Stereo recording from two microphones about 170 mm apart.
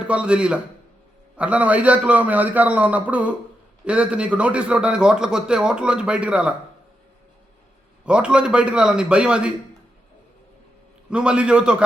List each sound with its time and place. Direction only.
0.0 s a man's voice: 5° right (ahead or behind)
8.0 s a man's voice: 5° right (ahead or behind)
11.1 s a man's voice: 5° right (ahead or behind)